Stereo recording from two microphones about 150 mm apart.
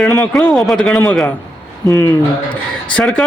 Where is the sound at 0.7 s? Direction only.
5° left (ahead or behind).